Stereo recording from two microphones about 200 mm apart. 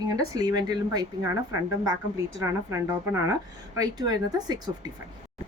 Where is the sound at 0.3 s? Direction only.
20° right (ahead or behind).